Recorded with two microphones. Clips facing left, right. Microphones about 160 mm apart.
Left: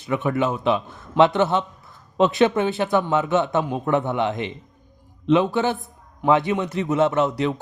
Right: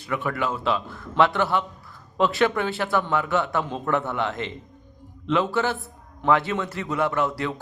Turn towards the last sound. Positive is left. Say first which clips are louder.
# left 5 dB
turn(degrees=20)  # may be behind; listen again after turning